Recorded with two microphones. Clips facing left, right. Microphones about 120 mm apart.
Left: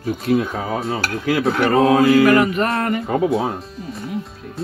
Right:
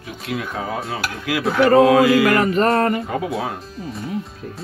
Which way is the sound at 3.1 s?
30° left (ahead or behind).